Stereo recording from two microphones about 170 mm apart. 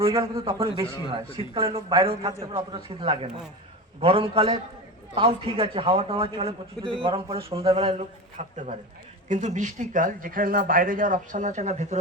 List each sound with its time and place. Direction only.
0.0 s a man's voice: 30° right (ahead or behind)